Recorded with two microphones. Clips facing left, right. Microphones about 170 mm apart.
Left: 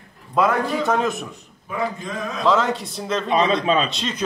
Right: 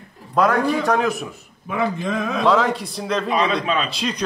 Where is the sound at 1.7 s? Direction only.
65° right (ahead or behind).